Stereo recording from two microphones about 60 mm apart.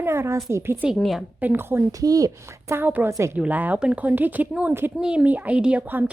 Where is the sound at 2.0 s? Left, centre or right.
Right.